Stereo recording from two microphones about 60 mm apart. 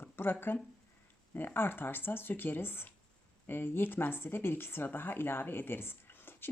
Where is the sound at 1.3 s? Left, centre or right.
Left.